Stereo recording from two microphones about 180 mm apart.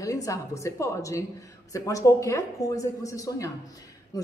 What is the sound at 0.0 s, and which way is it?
Speech, 20° left (ahead or behind).